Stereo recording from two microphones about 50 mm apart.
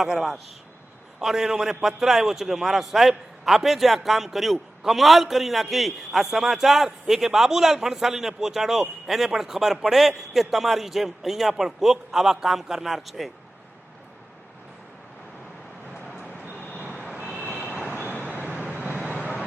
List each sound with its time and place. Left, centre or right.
0.0 s a man's voice: centre
16.9 s vehicle: centre
17.4 s vehicle: right
18.0 s vehicle: left
18.3 s vehicle: right